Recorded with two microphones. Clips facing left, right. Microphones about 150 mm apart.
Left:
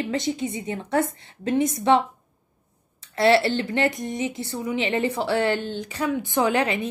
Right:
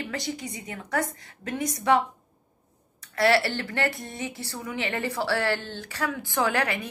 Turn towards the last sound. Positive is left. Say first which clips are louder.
# left 4 dB
turn(degrees=20)  # may be behind; listen again after turning